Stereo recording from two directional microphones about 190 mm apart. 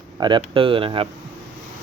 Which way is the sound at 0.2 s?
25° right (ahead or behind).